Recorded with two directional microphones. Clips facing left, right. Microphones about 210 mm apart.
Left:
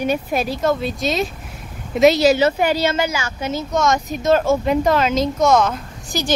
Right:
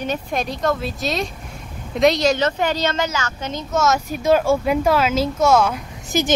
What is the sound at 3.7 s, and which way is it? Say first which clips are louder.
Speech: right 1 dB; 5° right (ahead or behind).